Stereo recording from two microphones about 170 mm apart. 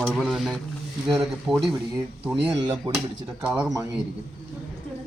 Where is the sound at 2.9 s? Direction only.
25° right (ahead or behind).